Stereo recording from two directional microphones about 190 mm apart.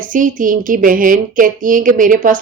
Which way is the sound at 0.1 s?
45° right (ahead or behind).